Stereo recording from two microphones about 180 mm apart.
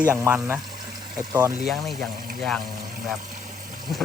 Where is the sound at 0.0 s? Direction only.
10° right (ahead or behind).